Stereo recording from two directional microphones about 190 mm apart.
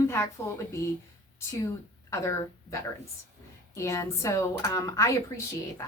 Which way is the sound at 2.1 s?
15° left (ahead or behind).